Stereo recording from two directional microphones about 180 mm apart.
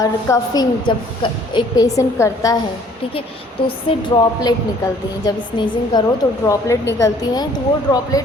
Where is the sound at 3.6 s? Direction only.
25° left (ahead or behind).